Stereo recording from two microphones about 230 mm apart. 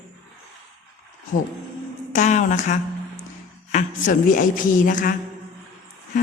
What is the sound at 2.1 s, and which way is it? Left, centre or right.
Speech, left.